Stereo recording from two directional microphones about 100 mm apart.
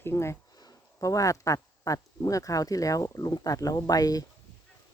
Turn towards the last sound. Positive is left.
turn(degrees=40)  # may be behind; listen again after turning